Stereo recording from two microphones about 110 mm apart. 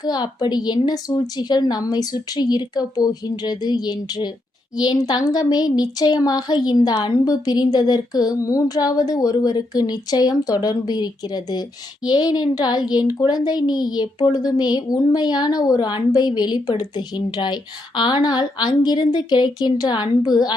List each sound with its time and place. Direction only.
0.0 s speech: 40° left (ahead or behind)